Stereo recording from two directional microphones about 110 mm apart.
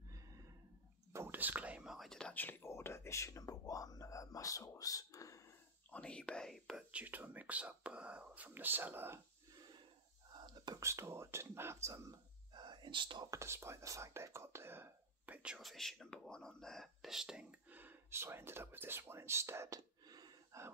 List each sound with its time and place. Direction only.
1.1 s whispering: 20° right (ahead or behind); by 2.3 s 5° left (ahead or behind)
2.3 s speech: 20° left (ahead or behind)
5.9 s speech: 10° left (ahead or behind)
6.9 s speech: 15° right (ahead or behind)
10.4 s whispering: 40° right (ahead or behind)
10.8 s speech: 25° right (ahead or behind)
12.5 s whispering: 45° right (ahead or behind)
13.3 s speech: 25° right (ahead or behind)
20.1 s a sound: 40° right (ahead or behind)